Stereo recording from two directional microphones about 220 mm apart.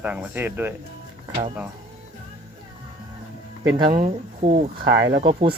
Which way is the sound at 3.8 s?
40° right (ahead or behind).